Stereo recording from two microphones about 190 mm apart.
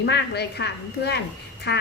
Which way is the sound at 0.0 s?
60° left (ahead or behind).